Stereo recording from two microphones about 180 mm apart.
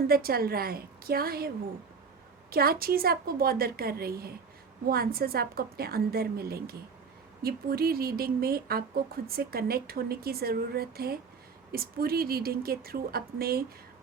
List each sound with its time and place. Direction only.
0.1 s speech: 55° right (ahead or behind)
2.5 s speech: 55° right (ahead or behind)